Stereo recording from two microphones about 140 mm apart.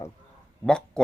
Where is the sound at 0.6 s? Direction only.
5° left (ahead or behind).